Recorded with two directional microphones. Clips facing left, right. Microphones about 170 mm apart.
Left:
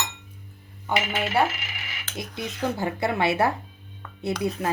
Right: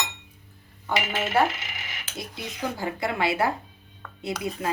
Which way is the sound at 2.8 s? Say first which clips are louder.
Left 1 dB; 25° left (ahead or behind).